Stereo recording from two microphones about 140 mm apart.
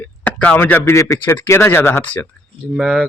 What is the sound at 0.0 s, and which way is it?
Speech, 10° left (ahead or behind).